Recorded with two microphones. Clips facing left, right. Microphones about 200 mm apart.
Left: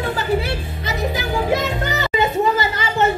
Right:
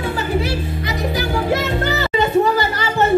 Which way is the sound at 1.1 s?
20° left (ahead or behind).